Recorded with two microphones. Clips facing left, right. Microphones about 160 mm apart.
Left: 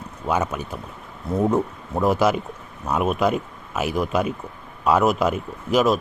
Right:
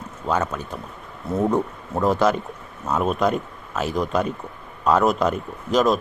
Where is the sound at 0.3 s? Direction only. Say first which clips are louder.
Even; 10° left (ahead or behind).